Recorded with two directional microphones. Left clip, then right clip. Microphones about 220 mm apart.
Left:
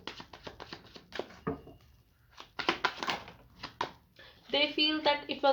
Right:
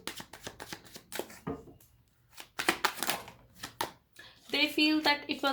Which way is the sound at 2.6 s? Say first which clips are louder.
Right 1 dB; 30° right (ahead or behind).